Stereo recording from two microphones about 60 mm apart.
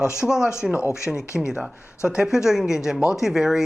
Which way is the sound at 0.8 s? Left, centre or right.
Left.